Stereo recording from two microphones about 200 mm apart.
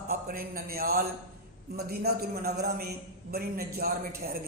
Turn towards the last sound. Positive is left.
turn(degrees=-50)  # may be behind; listen again after turning